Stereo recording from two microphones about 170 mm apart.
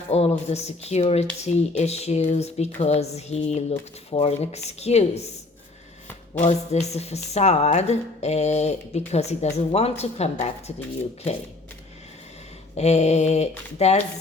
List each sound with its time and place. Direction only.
0.1 s speech: 40° left (ahead or behind)
6.4 s speech: 40° left (ahead or behind)
12.7 s speech: 40° left (ahead or behind)